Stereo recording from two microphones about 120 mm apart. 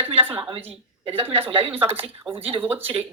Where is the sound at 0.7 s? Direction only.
55° right (ahead or behind).